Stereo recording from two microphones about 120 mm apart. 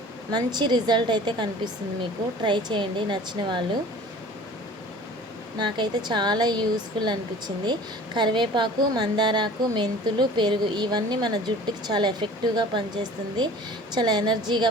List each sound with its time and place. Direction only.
0.3 s a woman's voice: 35° right (ahead or behind)
5.5 s a woman's voice: 40° right (ahead or behind)